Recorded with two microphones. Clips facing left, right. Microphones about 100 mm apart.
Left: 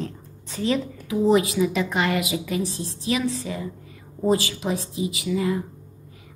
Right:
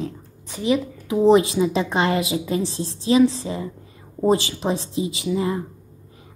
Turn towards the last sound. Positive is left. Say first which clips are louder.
# right 1 dB
turn(degrees=-30)  # may be behind; listen again after turning